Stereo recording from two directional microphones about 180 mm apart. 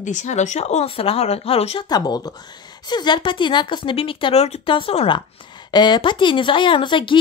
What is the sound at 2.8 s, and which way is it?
Speech, 25° left (ahead or behind).